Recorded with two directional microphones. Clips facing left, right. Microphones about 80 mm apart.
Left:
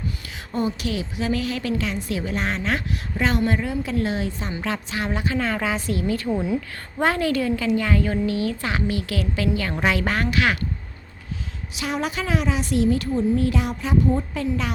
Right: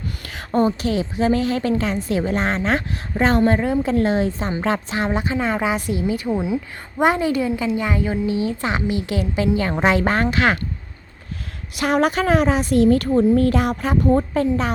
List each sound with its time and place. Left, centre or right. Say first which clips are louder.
0.3 s a woman's voice: right 7 dB; right
11.7 s a woman's voice: right 8 dB; right
14.3 s a woman's voice: right 6 dB; right